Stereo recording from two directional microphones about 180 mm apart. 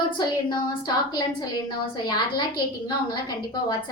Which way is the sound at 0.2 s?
25° left (ahead or behind).